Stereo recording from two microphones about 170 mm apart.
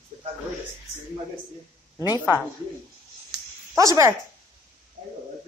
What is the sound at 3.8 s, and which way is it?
Speech, 20° right (ahead or behind).